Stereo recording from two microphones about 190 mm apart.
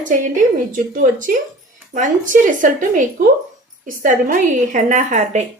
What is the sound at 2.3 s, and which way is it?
Speech, 50° right (ahead or behind).